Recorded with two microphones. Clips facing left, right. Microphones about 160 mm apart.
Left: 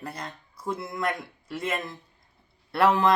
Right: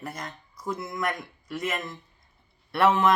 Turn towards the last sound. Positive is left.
turn(degrees=35)  # may be behind; listen again after turning